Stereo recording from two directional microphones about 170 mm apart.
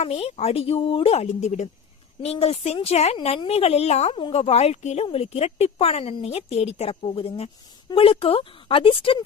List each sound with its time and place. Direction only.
0.0 s a woman's voice: 40° left (ahead or behind)